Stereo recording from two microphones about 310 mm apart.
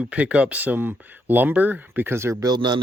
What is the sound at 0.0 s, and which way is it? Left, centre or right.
Speech, centre.